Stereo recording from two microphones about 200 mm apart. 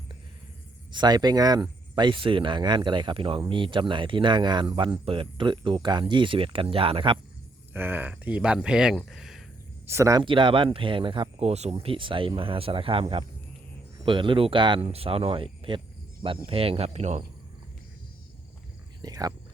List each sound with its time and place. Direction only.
0.9 s speech: 20° right (ahead or behind)
7.7 s speech: 10° right (ahead or behind)
9.9 s speech: 15° right (ahead or behind); by 17.2 s 35° right (ahead or behind)
19.0 s speech: 20° right (ahead or behind)